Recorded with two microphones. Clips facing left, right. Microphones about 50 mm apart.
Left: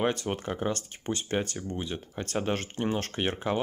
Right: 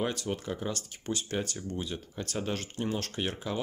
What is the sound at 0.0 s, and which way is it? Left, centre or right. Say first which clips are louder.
Speech: left 4 dB; left.